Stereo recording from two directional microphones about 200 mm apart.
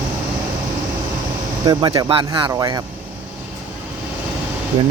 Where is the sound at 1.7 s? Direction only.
20° right (ahead or behind).